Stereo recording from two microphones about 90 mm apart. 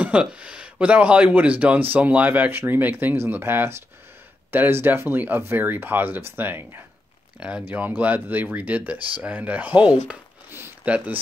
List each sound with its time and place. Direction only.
0.0 s speech: 15° right (ahead or behind)
7.3 s speech: 10° right (ahead or behind)